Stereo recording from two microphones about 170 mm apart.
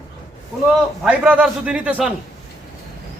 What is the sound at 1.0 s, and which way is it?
A man's voice, 10° right (ahead or behind).